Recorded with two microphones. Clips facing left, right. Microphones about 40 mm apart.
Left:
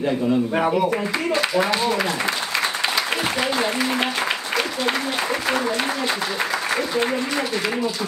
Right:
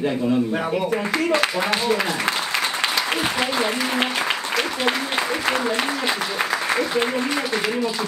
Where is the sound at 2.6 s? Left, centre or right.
Centre.